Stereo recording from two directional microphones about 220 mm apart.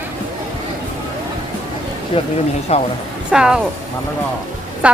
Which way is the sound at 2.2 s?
25° left (ahead or behind).